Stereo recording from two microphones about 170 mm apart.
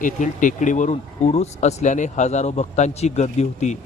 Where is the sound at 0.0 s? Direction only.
50° left (ahead or behind).